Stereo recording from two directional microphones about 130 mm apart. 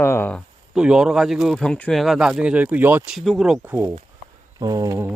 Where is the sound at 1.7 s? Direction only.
10° left (ahead or behind); by 3.1 s 15° right (ahead or behind).